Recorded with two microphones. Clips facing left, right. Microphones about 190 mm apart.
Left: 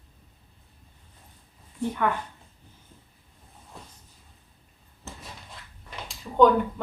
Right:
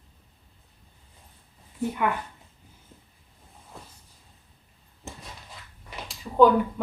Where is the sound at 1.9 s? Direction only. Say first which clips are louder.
Left 1 dB; 10° right (ahead or behind).